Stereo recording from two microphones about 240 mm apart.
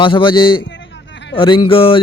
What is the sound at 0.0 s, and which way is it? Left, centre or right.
Speech, centre.